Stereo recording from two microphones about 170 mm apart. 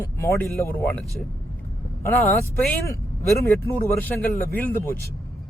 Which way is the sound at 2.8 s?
15° left (ahead or behind).